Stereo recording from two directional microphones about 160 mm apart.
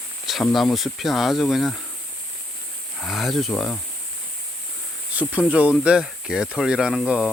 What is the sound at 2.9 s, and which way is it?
Speech, centre (ahead or behind).